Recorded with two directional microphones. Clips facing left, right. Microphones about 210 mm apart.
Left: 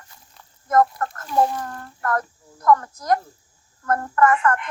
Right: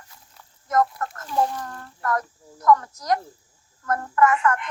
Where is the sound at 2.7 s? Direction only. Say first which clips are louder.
Left 1 dB; 50° left (ahead or behind).